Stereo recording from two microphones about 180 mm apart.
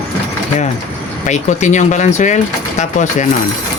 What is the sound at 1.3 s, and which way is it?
Speech, 40° left (ahead or behind).